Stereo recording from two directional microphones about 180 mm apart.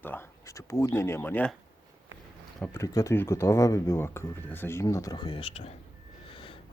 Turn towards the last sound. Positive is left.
turn(degrees=30)  # may be behind; listen again after turning